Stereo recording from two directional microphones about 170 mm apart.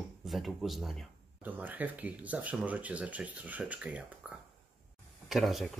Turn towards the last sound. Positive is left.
turn(degrees=0)  # may be behind; listen again after turning